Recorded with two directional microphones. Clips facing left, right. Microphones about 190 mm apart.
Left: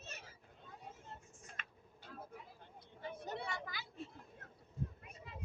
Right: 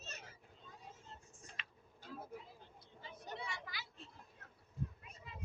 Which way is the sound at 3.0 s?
60° left (ahead or behind).